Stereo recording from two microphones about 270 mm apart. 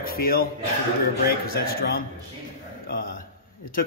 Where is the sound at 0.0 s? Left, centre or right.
Left.